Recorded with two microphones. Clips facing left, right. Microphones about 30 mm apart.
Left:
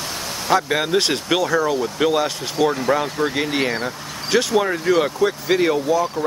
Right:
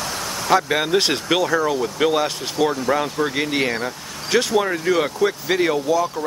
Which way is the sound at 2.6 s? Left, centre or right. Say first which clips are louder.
Left 1 dB; centre.